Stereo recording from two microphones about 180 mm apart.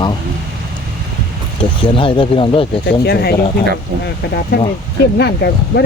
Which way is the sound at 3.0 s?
60° left (ahead or behind).